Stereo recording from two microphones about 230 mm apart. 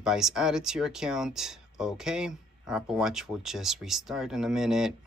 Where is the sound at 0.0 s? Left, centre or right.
Centre.